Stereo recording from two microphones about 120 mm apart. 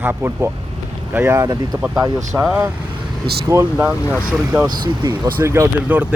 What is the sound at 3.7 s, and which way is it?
Speech, 15° right (ahead or behind).